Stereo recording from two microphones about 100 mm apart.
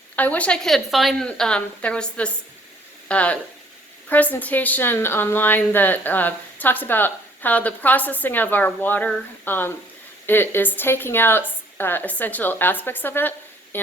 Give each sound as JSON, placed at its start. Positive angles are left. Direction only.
{"t": 0.2, "sound": "speech", "side_deg": 15}
{"t": 1.3, "sound": "a woman's voice", "side_deg": 10}